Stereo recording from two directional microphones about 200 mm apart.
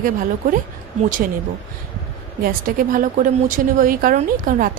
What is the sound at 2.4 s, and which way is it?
Speech, 45° right (ahead or behind).